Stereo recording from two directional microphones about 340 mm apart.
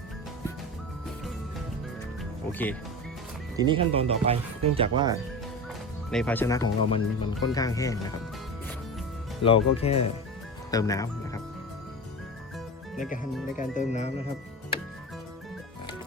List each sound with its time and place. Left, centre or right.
2.5 s speech: centre
3.6 s speech: centre
6.1 s speech: centre
9.4 s speech: centre
13.6 s speech: left